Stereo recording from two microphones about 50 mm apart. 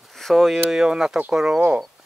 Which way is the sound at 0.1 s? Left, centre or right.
Centre.